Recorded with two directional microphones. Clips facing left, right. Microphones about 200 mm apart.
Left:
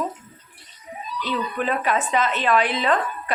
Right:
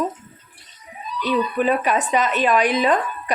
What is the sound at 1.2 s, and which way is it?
Speech, 15° right (ahead or behind).